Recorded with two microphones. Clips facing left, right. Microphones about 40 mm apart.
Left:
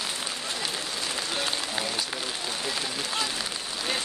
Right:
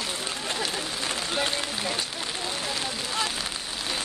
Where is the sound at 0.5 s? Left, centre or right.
Right.